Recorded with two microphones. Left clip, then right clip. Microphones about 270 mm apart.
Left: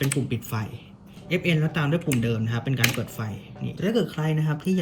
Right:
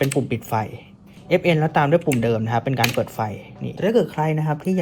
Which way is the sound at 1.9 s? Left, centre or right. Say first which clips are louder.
Right 8 dB; centre.